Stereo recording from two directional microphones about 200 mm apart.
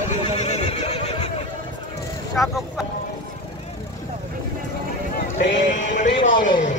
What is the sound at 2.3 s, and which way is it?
Speech, centre (ahead or behind).